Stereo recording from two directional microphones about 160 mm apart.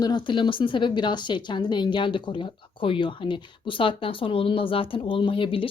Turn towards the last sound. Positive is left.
turn(degrees=35)  # may be behind; listen again after turning